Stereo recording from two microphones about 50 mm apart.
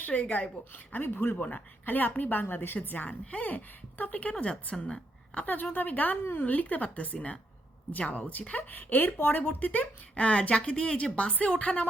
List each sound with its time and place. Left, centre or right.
0.0 s speech: left
0.9 s a woman's voice: left